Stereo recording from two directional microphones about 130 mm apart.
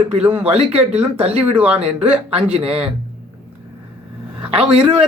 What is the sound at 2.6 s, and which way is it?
Speech, 50° right (ahead or behind).